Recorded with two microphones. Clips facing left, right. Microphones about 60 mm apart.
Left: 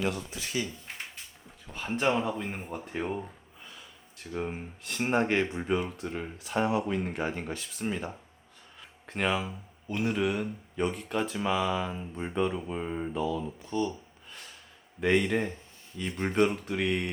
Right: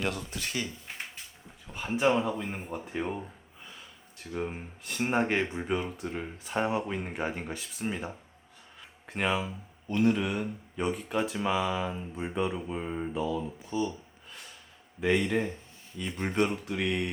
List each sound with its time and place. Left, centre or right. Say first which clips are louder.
0.0 s speech: left 1 dB; right
1.7 s speech: right 2 dB; centre
8.8 s a sound: left 1 dB; centre
9.9 s speech: right 2 dB; centre